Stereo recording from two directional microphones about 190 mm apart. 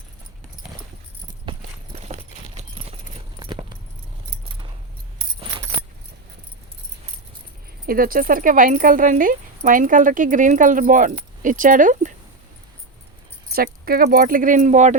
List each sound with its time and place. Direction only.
1.5 s clip-clop: 25° right (ahead or behind)
7.9 s speech: 50° right (ahead or behind)
13.5 s speech: 50° right (ahead or behind)